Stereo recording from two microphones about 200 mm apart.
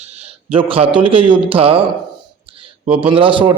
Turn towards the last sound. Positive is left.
turn(degrees=-25)  # may be behind; listen again after turning